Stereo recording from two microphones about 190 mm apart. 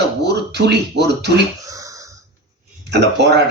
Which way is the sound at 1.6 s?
15° right (ahead or behind).